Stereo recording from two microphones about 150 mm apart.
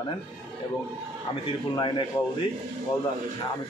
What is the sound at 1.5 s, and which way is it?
Speech, 35° left (ahead or behind).